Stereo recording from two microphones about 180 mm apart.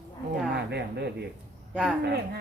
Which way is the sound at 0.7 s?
65° right (ahead or behind).